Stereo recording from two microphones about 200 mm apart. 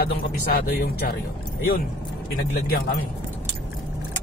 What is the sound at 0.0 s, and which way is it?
A man's voice, 50° left (ahead or behind).